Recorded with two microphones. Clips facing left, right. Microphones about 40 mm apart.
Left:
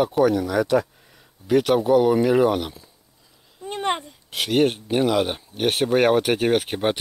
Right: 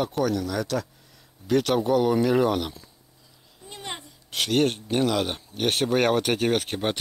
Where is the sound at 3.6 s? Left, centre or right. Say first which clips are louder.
Left 12 dB; left.